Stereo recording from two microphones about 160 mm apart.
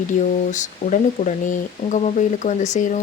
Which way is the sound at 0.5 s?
50° left (ahead or behind).